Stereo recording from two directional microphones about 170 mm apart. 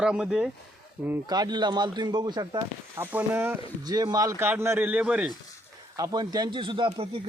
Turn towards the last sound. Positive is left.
turn(degrees=-30)  # may be behind; listen again after turning